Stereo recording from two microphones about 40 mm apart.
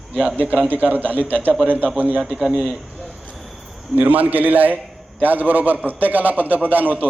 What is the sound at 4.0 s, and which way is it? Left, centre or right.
A man's voice, right.